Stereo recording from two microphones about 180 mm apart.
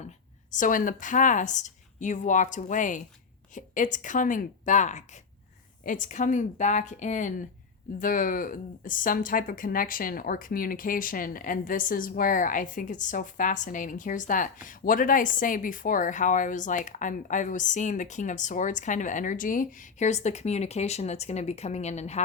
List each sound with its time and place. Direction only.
0.5 s speech: 45° left (ahead or behind)